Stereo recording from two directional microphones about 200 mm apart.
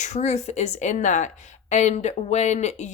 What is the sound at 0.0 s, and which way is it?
Speech, 35° left (ahead or behind).